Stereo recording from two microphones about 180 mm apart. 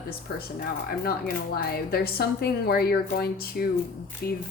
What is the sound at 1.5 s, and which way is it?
A woman's voice, 60° left (ahead or behind).